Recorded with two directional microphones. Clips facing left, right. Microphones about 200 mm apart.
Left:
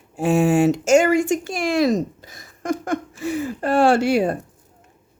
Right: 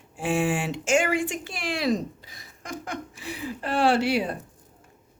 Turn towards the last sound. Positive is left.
turn(degrees=45)  # may be behind; listen again after turning